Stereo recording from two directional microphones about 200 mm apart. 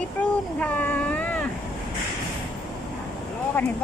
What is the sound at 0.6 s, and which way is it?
Cat, 10° left (ahead or behind).